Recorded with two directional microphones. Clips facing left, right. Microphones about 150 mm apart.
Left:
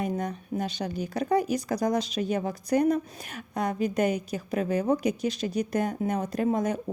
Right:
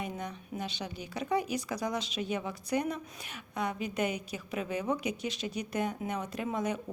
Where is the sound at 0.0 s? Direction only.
40° left (ahead or behind).